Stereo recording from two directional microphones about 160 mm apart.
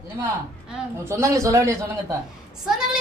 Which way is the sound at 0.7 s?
15° right (ahead or behind).